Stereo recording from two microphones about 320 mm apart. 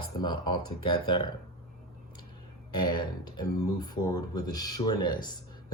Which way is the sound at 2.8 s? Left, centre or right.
Centre.